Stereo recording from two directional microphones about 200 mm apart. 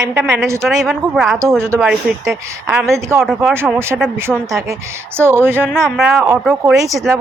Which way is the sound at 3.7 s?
10° right (ahead or behind).